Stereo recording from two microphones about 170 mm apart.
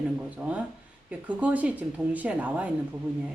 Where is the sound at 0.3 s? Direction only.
5° right (ahead or behind).